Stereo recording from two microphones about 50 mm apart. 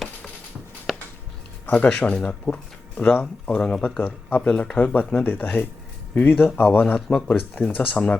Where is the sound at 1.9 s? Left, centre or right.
Left.